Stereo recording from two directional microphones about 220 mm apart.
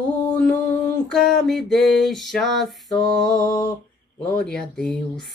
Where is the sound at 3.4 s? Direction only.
20° left (ahead or behind).